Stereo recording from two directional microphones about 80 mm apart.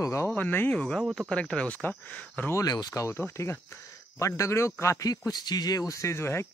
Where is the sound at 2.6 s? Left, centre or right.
Left.